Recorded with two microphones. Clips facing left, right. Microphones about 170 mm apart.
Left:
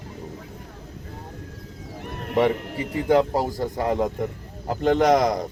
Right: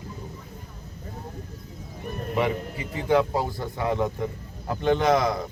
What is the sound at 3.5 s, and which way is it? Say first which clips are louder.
A man's voice: left 3 dB; 40° left (ahead or behind).